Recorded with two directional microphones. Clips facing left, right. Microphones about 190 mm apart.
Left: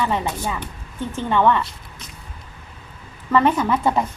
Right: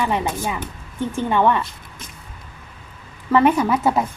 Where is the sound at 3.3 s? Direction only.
10° right (ahead or behind).